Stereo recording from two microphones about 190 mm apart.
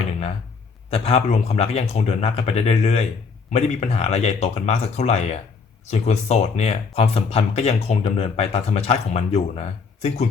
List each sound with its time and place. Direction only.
0.9 s speech: 30° left (ahead or behind)